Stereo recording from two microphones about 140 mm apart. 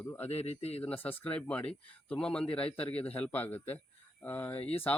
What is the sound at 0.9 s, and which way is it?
Speech, 10° left (ahead or behind).